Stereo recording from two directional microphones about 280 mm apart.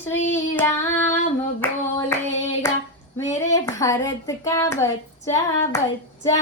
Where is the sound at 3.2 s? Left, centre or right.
Centre.